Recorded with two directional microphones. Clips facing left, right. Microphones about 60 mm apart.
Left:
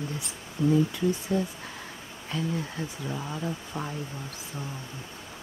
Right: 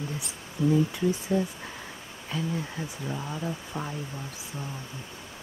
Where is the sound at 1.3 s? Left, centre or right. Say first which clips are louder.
Right 3 dB; centre.